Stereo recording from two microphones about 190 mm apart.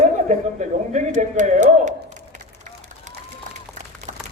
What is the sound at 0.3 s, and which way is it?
A man's voice, 40° right (ahead or behind).